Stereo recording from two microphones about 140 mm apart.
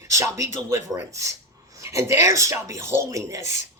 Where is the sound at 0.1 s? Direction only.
20° right (ahead or behind).